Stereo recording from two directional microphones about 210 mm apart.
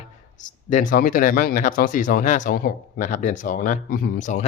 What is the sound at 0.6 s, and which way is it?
Speech, 40° left (ahead or behind).